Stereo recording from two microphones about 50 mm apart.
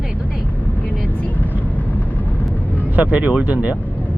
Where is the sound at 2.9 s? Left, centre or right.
Right.